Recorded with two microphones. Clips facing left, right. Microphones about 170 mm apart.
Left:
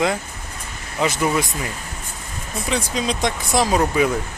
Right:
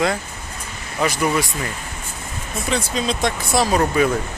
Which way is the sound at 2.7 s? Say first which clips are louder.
Right 1 dB; 15° left (ahead or behind).